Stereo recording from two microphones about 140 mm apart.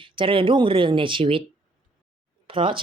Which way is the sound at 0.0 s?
40° right (ahead or behind).